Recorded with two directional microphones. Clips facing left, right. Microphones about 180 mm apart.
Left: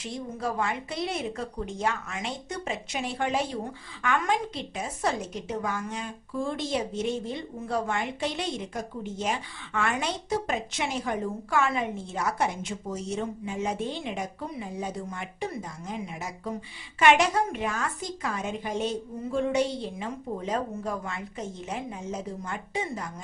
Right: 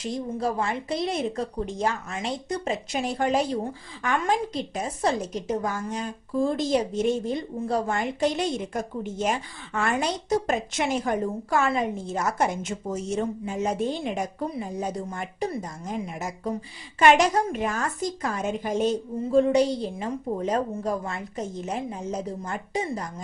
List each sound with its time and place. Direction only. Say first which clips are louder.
0.0 s a woman's voice: right 5 dB; 35° right (ahead or behind)